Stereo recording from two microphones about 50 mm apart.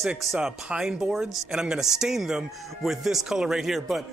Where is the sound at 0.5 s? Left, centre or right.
Centre.